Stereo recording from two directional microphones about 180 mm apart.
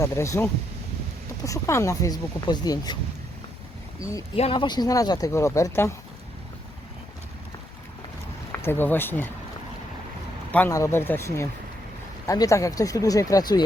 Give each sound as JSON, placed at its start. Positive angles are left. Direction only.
{"t": 0.0, "sound": "speech", "side_deg": 15}
{"t": 4.4, "sound": "speech", "side_deg": 30}
{"t": 8.6, "sound": "speech", "side_deg": 10}
{"t": 10.5, "sound": "speech", "side_deg": 15}